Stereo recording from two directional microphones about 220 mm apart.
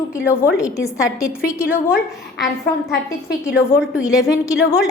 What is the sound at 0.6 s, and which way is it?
A woman's voice, 15° left (ahead or behind).